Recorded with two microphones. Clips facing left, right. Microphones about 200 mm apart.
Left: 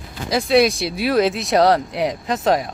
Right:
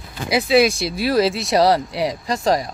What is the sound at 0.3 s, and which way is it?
Speech, 5° right (ahead or behind).